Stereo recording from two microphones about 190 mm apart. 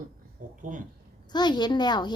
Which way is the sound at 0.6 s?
45° right (ahead or behind).